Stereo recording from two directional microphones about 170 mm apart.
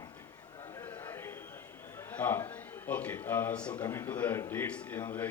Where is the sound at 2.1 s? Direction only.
10° left (ahead or behind).